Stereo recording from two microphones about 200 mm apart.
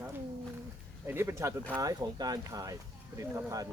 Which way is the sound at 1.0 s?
10° right (ahead or behind).